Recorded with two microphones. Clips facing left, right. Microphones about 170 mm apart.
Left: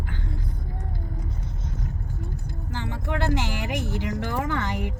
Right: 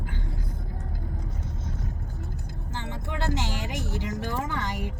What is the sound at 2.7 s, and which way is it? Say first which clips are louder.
Vehicle: left 3 dB; 20° right (ahead or behind).